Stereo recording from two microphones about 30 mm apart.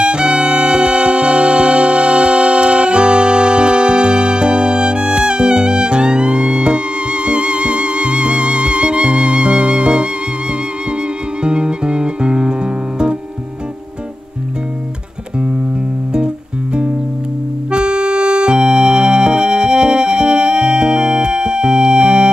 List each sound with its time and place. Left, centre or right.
0.0 s music: right
11.4 s music: right
17.6 s music: right